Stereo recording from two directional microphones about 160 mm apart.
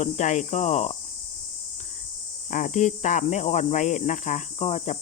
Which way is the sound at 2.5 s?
55° left (ahead or behind).